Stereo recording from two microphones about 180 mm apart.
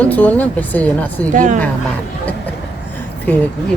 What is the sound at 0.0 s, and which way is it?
Speech, 10° left (ahead or behind).